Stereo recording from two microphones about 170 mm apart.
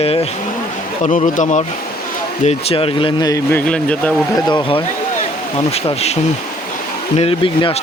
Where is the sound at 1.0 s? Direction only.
45° left (ahead or behind); by 3.4 s 25° left (ahead or behind).